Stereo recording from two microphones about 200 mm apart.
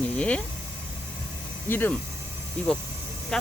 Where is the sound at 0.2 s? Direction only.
5° left (ahead or behind).